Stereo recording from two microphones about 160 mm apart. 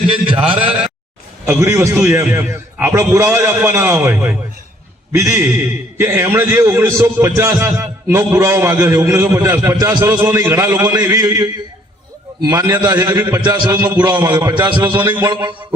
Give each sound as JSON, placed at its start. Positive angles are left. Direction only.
{"t": 0.1, "sound": "a sound", "side_deg": -35}
{"t": 1.5, "sound": "a man's voice", "side_deg": -20}
{"t": 13.9, "sound": "a man's voice", "side_deg": -10}
{"t": 14.2, "sound": "a man's voice", "side_deg": -25}
{"t": 14.8, "sound": "a man's voice", "side_deg": -10}
{"t": 15.1, "sound": "a man's voice", "side_deg": -25}